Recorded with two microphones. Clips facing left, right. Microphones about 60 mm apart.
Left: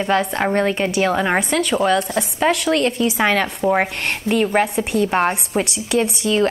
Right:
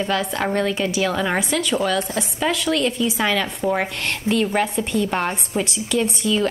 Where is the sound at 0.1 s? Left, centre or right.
Left.